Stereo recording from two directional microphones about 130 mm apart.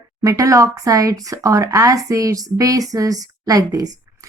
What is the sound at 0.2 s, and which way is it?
Speech, 25° right (ahead or behind).